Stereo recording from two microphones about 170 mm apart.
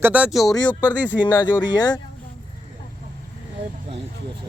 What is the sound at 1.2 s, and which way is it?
Speech, 25° left (ahead or behind).